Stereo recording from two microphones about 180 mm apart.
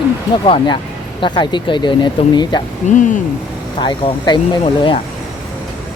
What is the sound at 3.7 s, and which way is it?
Speech, 25° left (ahead or behind).